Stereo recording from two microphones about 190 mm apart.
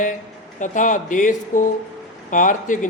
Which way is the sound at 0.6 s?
40° left (ahead or behind).